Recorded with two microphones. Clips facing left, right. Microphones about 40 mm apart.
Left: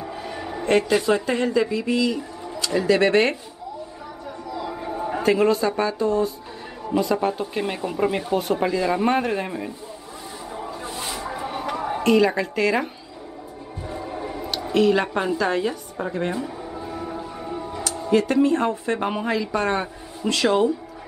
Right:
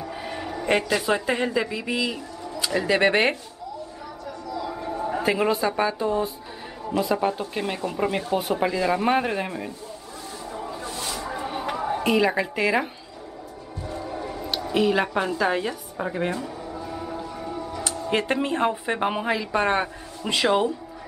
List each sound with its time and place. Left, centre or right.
0.1 s music: centre
0.7 s speech: centre
2.9 s speech: centre
4.6 s a sound: centre
5.2 s speech: centre
6.9 s speech: centre
10.9 s bow-wow: centre
11.3 s a sound: centre
12.0 s speech: centre
13.8 s music: centre
14.7 s speech: centre
16.3 s a sound: centre
16.9 s music: centre
18.1 s speech: right; by 20.7 s centre